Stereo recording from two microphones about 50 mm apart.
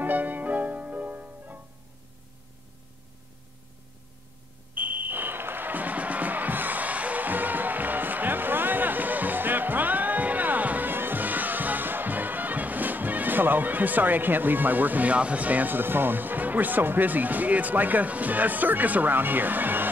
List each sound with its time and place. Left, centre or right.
0.0 s music: right
4.7 s music: right